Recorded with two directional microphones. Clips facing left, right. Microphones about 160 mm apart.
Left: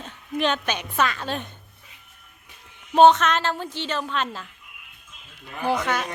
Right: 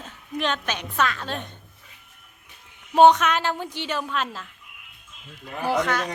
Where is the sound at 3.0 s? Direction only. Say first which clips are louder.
Even; 10° right (ahead or behind).